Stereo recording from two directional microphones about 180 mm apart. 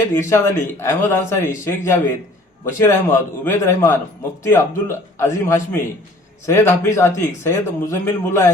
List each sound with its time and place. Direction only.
0.2 s speech: 15° left (ahead or behind)